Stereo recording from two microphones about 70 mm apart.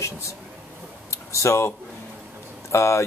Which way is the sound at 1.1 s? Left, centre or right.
Left.